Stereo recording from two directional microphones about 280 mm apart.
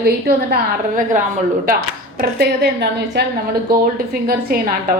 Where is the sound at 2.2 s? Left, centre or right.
Right.